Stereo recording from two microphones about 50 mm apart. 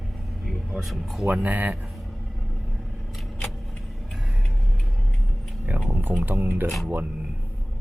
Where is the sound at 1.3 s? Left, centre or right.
Right.